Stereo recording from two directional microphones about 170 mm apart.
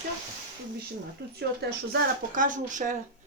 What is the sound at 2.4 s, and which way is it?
Speech, 50° right (ahead or behind).